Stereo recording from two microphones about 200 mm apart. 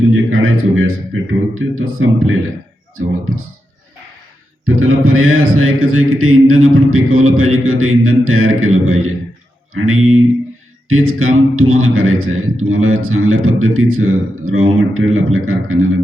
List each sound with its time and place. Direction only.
0.1 s a man's voice: 90° right
4.6 s a man's voice: 90° right